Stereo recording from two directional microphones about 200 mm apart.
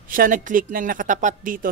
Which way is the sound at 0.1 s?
45° right (ahead or behind).